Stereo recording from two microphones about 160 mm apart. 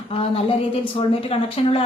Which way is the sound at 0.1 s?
35° left (ahead or behind).